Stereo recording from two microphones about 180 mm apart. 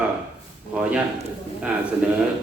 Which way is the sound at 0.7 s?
5° right (ahead or behind).